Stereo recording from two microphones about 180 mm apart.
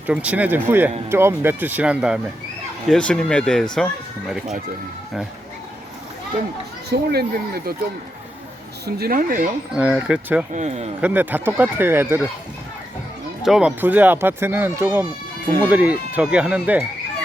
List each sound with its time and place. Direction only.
0.1 s speech: 5° right (ahead or behind)
2.9 s speech: 5° left (ahead or behind)
7.1 s speech: 60° right (ahead or behind)
8.9 s speech: 55° right (ahead or behind)
9.7 s speech: 10° right (ahead or behind)
10.5 s a man's voice: 40° right (ahead or behind)
11.0 s speech: 10° right (ahead or behind)
13.4 s speech: 5° right (ahead or behind)